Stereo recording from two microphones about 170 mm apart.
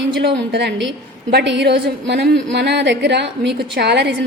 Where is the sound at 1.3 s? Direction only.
90° right.